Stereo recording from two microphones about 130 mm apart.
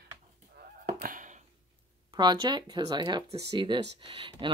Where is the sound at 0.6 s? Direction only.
90° right.